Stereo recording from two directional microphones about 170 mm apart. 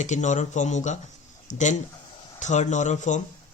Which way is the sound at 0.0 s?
45° left (ahead or behind).